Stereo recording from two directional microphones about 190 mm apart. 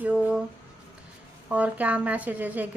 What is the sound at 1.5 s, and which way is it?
Speech, 5° right (ahead or behind).